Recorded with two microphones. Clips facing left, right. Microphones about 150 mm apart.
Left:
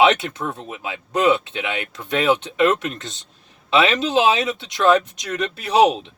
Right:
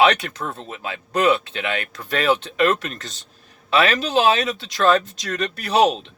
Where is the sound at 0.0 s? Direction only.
20° left (ahead or behind).